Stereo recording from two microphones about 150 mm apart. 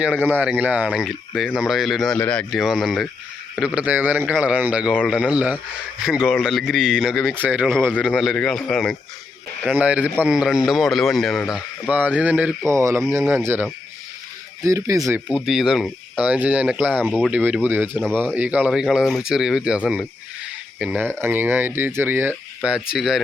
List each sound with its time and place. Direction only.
0.3 s speech: 10° right (ahead or behind); by 2.5 s 10° left (ahead or behind)
2.5 s speech: centre (ahead or behind)
3.8 s speech: 10° right (ahead or behind)
7.7 s speech: 5° left (ahead or behind)
9.7 s speech: 10° right (ahead or behind)
12.7 s speech: 20° right (ahead or behind)
15.3 s speech: 5° right (ahead or behind)
16.9 s speech: 5° left (ahead or behind)
17.3 s speech: 10° right (ahead or behind)